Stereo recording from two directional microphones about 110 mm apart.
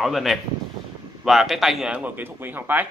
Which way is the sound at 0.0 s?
Centre (ahead or behind).